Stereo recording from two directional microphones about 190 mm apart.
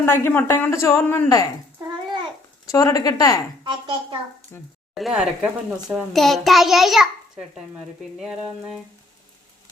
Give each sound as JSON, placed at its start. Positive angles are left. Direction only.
{"t": 0.0, "sound": "speech", "side_deg": 10}
{"t": 2.6, "sound": "a woman's voice", "side_deg": 15}
{"t": 3.6, "sound": "a child's voice", "side_deg": -25}
{"t": 4.5, "sound": "speech", "side_deg": 10}
{"t": 4.9, "sound": "a child's voice", "side_deg": -5}